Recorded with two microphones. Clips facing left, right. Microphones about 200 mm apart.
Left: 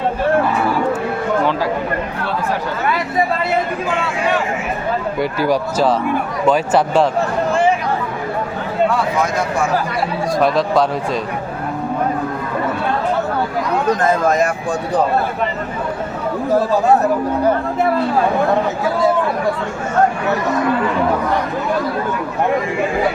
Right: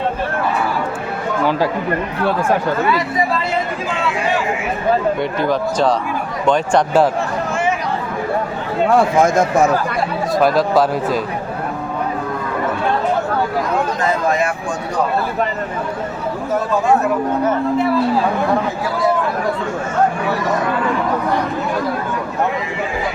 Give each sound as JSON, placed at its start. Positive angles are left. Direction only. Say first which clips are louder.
{"t": 5.4, "sound": "speech", "louder": "left 2 dB", "side_deg": 5}
{"t": 8.9, "sound": "speech", "louder": "right 5 dB", "side_deg": -50}
{"t": 10.3, "sound": "speech", "louder": "right 1 dB", "side_deg": 0}
{"t": 14.0, "sound": "speech", "louder": "left 3 dB", "side_deg": 45}